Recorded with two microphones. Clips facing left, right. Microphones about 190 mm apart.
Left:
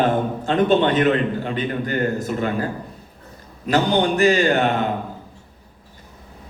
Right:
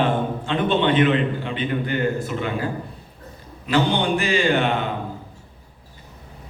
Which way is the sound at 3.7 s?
45° left (ahead or behind).